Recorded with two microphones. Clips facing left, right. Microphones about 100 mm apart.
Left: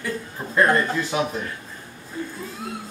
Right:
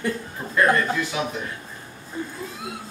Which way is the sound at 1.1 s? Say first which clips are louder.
Left 3 dB; 40° left (ahead or behind).